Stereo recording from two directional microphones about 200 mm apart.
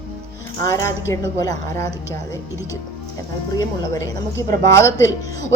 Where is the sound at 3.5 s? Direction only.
20° left (ahead or behind).